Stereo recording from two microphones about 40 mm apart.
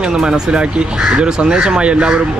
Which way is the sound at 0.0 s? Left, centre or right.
Right.